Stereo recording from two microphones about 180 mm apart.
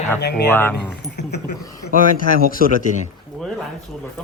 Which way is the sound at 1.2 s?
70° left (ahead or behind).